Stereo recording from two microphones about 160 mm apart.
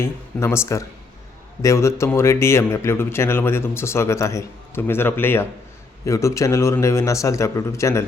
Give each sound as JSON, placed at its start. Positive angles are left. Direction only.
{"t": 0.0, "sound": "a man's voice", "side_deg": 15}